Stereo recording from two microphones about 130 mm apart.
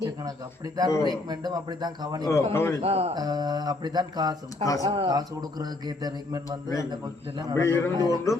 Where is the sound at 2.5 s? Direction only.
20° left (ahead or behind).